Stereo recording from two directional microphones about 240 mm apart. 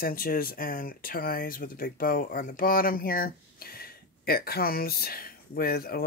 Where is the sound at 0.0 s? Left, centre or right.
Left.